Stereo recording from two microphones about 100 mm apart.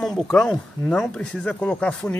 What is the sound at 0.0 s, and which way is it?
Speech, 5° left (ahead or behind).